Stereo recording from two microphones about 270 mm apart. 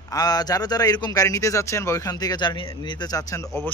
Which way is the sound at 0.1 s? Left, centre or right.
Centre.